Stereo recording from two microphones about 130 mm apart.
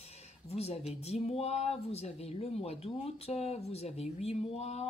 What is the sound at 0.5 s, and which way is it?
Speech, 55° left (ahead or behind).